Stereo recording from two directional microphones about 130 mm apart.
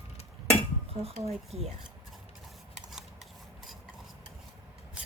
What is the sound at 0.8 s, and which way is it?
Speech, 50° right (ahead or behind).